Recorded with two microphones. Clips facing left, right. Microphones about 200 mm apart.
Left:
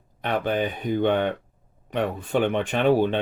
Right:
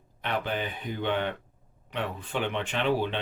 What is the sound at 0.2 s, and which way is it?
Speech, 45° left (ahead or behind).